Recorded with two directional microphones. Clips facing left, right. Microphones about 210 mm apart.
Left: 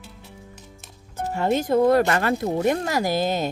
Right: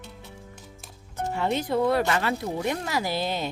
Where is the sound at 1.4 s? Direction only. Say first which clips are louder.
Left 5 dB; 45° left (ahead or behind).